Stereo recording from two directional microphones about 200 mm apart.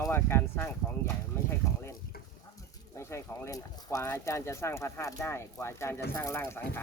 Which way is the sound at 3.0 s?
15° left (ahead or behind).